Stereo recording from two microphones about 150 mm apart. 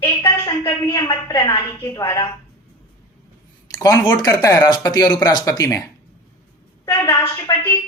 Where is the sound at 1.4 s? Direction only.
30° left (ahead or behind).